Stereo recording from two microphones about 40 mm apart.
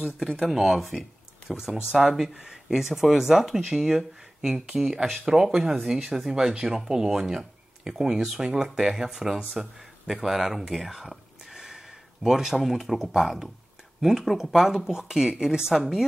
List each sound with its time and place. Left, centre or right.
0.4 s speech: centre
8.9 s speech: centre
10.9 s a sound: centre
13.1 s speech: centre